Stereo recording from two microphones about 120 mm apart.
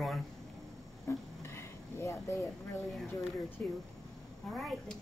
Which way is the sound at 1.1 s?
25° left (ahead or behind).